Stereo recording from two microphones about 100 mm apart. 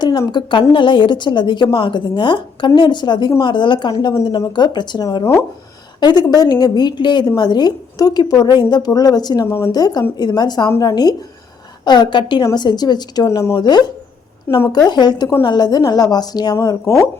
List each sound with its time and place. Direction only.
0.0 s a woman's voice: 45° left (ahead or behind)
5.2 s speech: 25° left (ahead or behind)
6.0 s a woman's voice: 45° left (ahead or behind)
14.5 s speech: 20° left (ahead or behind)
14.8 s a woman's voice: 45° left (ahead or behind)